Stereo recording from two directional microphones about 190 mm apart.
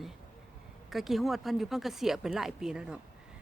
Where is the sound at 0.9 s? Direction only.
Centre (ahead or behind).